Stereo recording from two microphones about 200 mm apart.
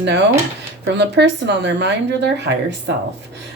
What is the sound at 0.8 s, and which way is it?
Speech, 60° right (ahead or behind).